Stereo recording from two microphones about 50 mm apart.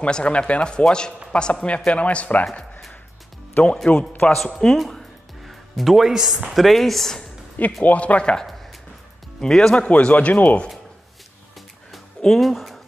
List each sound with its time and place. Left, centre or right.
0.0 s speech: left
3.6 s speech: centre
4.3 s speech: centre
4.7 s music: centre
6.0 s speech: centre
6.5 s speech: centre
7.8 s speech: left
9.4 s speech: centre
9.8 s speech: left
12.2 s speech: centre